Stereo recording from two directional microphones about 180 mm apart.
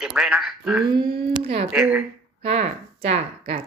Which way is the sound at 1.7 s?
5° right (ahead or behind).